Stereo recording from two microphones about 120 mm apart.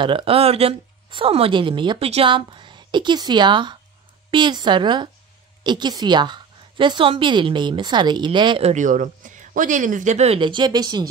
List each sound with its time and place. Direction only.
0.0 s a woman's voice: 50° right (ahead or behind)
8.6 s speech: 90° right; by 10.4 s 65° right (ahead or behind)
10.4 s a woman's voice: 40° right (ahead or behind)